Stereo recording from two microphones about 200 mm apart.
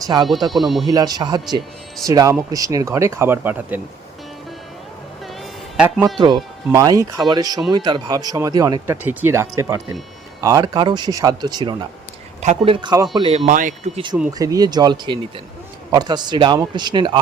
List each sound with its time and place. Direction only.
0.0 s speech: 20° right (ahead or behind)
0.5 s speech: centre (ahead or behind)
0.9 s speech: 20° right (ahead or behind)
5.8 s speech: 5° right (ahead or behind)
6.1 s speech: 20° right (ahead or behind)
13.5 s speech: 40° right (ahead or behind)
14.2 s speech: 15° right (ahead or behind)